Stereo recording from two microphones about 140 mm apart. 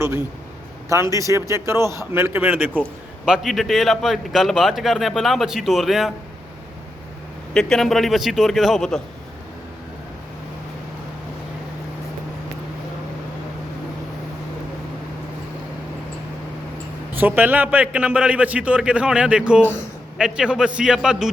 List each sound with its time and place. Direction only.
0.9 s a man's voice: 20° right (ahead or behind)
3.2 s a man's voice: 5° right (ahead or behind)
7.5 s a man's voice: 5° left (ahead or behind)
17.2 s a man's voice: 15° right (ahead or behind)